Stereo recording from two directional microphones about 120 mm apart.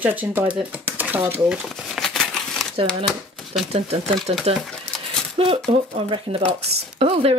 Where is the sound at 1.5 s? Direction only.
Centre (ahead or behind).